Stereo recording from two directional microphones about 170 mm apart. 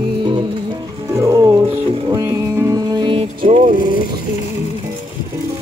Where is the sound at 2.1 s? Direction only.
15° right (ahead or behind).